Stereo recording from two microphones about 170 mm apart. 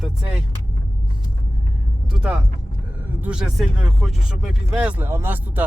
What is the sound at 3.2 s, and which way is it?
Speech, 5° right (ahead or behind).